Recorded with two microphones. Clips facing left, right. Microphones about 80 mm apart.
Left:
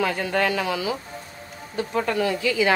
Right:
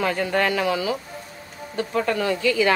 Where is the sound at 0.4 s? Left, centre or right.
Right.